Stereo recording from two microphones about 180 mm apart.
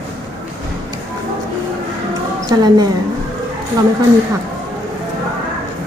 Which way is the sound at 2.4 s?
20° right (ahead or behind).